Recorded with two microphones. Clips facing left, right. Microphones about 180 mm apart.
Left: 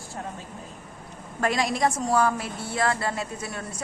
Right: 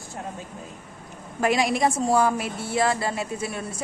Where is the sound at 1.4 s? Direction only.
25° right (ahead or behind).